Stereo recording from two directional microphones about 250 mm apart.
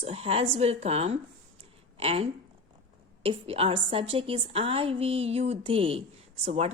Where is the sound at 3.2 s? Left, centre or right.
Right.